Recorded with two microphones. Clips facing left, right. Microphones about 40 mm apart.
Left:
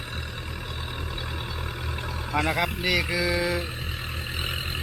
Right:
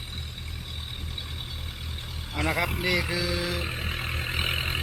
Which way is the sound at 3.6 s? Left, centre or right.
Right.